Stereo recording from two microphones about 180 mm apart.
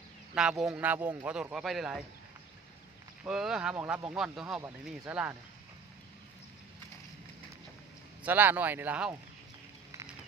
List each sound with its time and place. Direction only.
0.3 s speech: 5° right (ahead or behind)
3.2 s speech: 5° right (ahead or behind)
8.2 s speech: 10° right (ahead or behind)